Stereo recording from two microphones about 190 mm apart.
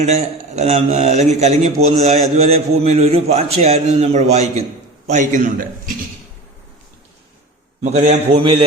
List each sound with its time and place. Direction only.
0.0 s a man's voice: 35° right (ahead or behind)
7.9 s a man's voice: 35° right (ahead or behind)